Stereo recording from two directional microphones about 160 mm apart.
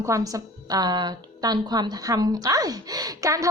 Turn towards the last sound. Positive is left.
turn(degrees=-20)  # may be behind; listen again after turning